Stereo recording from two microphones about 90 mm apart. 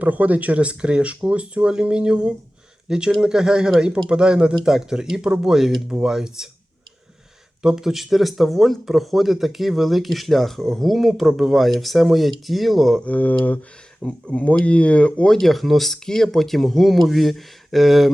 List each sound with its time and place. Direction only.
0.0 s speech: 15° right (ahead or behind)
7.6 s speech: 5° right (ahead or behind)
13.1 s speech: 20° left (ahead or behind)
15.4 s speech: centre (ahead or behind)